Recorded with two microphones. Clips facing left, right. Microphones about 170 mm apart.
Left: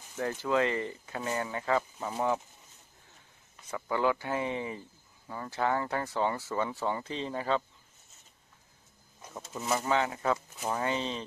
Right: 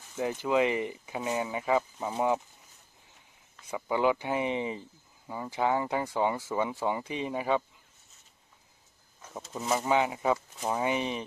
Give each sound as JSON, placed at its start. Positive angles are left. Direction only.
{"t": 0.2, "sound": "speech", "side_deg": -15}
{"t": 3.6, "sound": "speech", "side_deg": -15}
{"t": 9.3, "sound": "speech", "side_deg": -10}
{"t": 9.8, "sound": "speech", "side_deg": -15}